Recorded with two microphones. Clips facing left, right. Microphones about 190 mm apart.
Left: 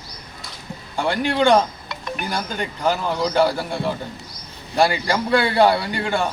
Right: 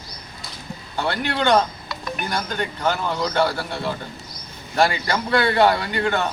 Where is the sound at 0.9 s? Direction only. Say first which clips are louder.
Left 3 dB; 10° left (ahead or behind).